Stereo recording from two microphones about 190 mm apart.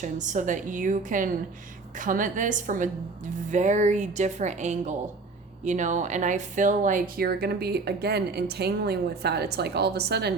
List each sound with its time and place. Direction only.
0.0 s a woman's voice: 40° right (ahead or behind); by 10.3 s 60° right (ahead or behind)